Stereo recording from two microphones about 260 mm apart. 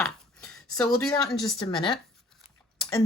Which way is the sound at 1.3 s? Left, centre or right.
Centre.